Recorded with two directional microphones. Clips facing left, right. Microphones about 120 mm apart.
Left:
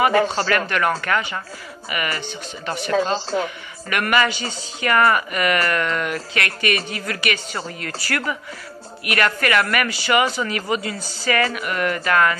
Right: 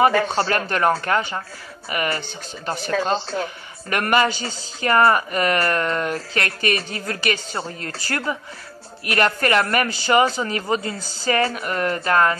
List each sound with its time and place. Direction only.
0.5 s a woman's voice: 35° right (ahead or behind)
2.9 s speech: 30° left (ahead or behind)
3.4 s a woman's voice: 40° right (ahead or behind)
4.3 s speech: centre (ahead or behind)
4.8 s a woman's voice: 35° right (ahead or behind)
11.0 s speech: centre (ahead or behind)
11.2 s a woman's voice: 35° right (ahead or behind)